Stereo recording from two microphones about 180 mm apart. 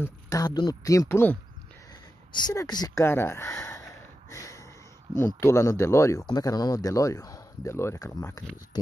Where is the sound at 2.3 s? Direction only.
25° left (ahead or behind).